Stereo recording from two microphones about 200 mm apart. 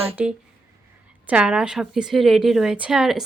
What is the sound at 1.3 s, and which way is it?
A woman's voice, 5° right (ahead or behind).